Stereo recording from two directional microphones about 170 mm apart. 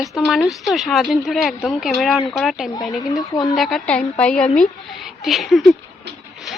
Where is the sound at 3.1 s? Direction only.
20° left (ahead or behind).